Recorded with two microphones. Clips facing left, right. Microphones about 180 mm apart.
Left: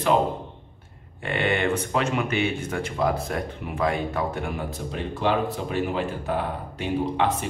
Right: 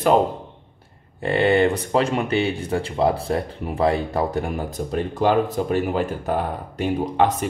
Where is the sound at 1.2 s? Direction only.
35° right (ahead or behind).